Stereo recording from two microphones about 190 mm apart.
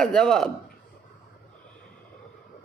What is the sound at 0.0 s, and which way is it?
Speech, 5° left (ahead or behind).